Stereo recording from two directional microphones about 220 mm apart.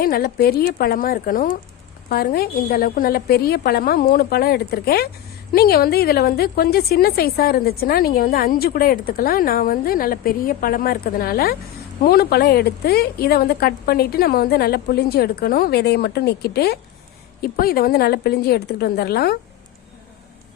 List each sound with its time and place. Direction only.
0.0 s a woman's voice: 40° left (ahead or behind)